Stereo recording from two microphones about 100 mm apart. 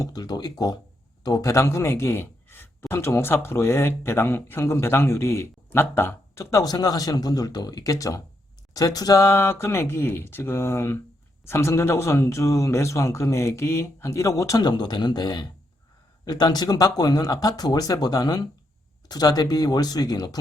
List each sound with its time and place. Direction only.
0.0 s a man's voice: 40° left (ahead or behind)
14.7 s speech: 45° left (ahead or behind)